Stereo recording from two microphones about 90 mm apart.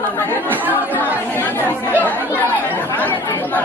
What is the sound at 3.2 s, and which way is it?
Speech, 25° left (ahead or behind).